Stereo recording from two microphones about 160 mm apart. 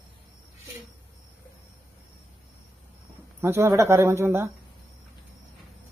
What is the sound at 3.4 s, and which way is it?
Speech, 15° right (ahead or behind).